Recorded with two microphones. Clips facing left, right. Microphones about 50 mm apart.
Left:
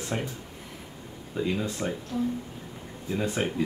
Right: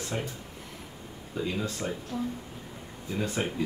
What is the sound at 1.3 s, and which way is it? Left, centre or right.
Speech, centre.